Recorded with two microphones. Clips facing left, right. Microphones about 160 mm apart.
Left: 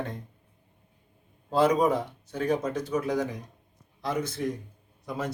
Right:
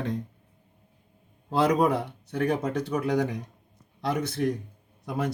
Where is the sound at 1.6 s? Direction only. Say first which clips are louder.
Even; 70° right (ahead or behind).